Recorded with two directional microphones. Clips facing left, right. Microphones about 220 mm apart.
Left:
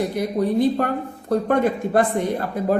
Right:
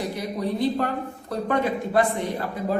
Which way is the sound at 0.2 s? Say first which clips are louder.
Left 7 dB; 50° left (ahead or behind).